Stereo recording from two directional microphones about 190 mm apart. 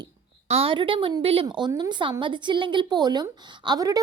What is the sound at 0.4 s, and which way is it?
A woman's voice, 30° right (ahead or behind).